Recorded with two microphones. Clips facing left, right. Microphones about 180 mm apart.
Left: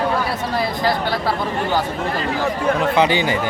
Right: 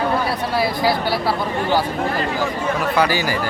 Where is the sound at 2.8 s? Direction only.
20° left (ahead or behind).